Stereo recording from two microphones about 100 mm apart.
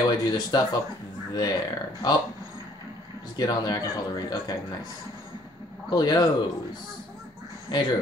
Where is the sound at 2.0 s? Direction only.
40° left (ahead or behind).